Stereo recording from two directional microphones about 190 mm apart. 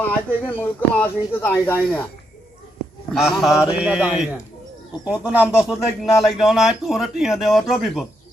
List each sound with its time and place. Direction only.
0.4 s speech: 10° left (ahead or behind)
3.1 s speech: centre (ahead or behind)